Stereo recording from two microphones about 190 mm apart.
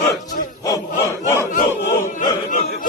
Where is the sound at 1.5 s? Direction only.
45° left (ahead or behind).